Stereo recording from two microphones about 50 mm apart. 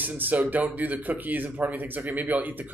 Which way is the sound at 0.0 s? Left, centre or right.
Right.